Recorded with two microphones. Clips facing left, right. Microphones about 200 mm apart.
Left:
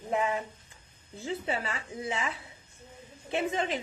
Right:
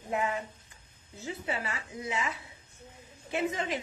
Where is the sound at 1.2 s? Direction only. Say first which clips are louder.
Left 3 dB; 25° left (ahead or behind).